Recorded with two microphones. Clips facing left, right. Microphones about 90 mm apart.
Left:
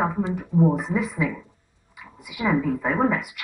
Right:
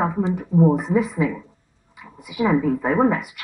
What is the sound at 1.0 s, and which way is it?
Speech, 35° right (ahead or behind).